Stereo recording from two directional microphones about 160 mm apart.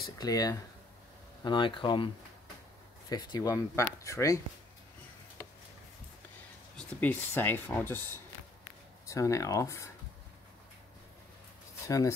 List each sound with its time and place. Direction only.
0.2 s speech: 25° left (ahead or behind)
3.1 s speech: 25° left (ahead or behind)
6.8 s speech: 10° left (ahead or behind)
9.0 s speech: 20° left (ahead or behind)